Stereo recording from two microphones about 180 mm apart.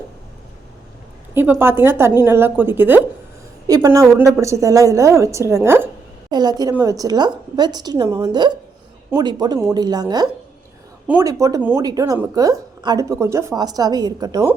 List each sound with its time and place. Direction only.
1.3 s a woman's voice: 15° right (ahead or behind)